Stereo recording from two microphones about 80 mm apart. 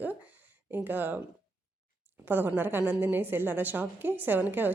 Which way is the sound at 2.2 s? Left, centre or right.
Right.